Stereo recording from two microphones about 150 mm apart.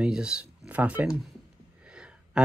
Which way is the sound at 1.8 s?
5° right (ahead or behind).